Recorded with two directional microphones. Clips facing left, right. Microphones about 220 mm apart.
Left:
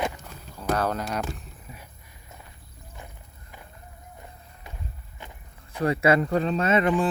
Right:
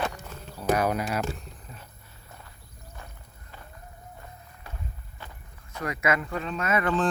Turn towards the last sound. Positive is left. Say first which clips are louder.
# left 5 dB
turn(degrees=25)  # may be behind; listen again after turning